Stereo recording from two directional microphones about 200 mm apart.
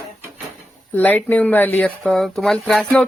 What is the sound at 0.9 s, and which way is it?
Speech, 10° left (ahead or behind).